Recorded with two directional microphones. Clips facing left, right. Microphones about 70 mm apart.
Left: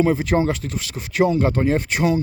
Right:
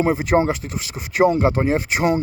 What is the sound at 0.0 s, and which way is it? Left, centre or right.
Speech, centre.